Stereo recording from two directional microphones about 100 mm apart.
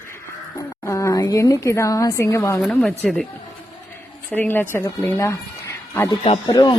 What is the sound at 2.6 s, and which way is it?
Speech, 15° left (ahead or behind).